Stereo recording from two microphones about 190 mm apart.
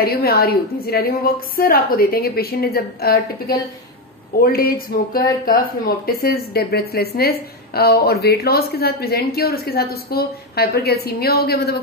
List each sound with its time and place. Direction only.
0.0 s a woman's voice: 55° left (ahead or behind)